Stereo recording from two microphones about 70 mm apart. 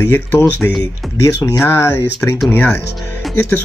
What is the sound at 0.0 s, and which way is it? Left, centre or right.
Speech, left.